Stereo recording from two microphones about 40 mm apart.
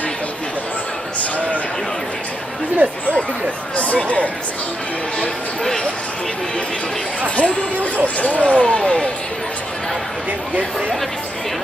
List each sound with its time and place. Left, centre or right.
2.8 s speech: right
3.7 s speech: left
7.3 s speech: left
8.5 s speech: left